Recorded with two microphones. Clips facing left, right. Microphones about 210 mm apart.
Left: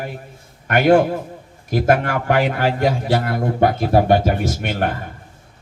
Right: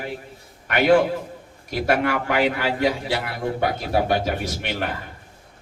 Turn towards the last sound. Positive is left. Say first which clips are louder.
# left 6 dB
turn(degrees=50)  # may be behind; listen again after turning